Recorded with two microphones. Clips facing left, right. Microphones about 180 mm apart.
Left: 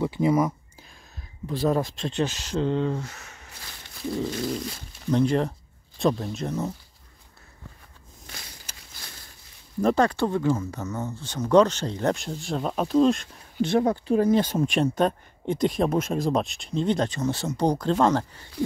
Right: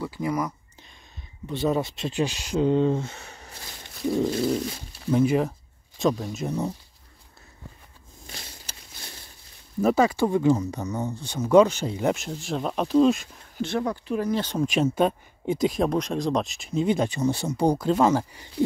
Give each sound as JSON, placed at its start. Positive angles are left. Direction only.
{"t": 0.0, "sound": "speech", "side_deg": 25}
{"t": 1.5, "sound": "speech", "side_deg": 0}
{"t": 5.1, "sound": "speech", "side_deg": -5}
{"t": 8.7, "sound": "a sound", "side_deg": -30}
{"t": 9.8, "sound": "speech", "side_deg": -5}
{"t": 13.6, "sound": "speech", "side_deg": 20}
{"t": 13.8, "sound": "speech", "side_deg": 30}
{"t": 14.3, "sound": "speech", "side_deg": 10}